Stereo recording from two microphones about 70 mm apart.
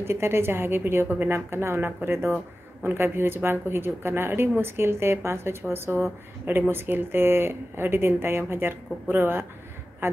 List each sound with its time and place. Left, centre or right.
0.0 s speech: right